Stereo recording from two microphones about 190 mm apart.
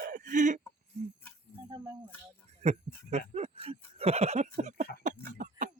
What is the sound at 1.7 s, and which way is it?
Music, 20° right (ahead or behind).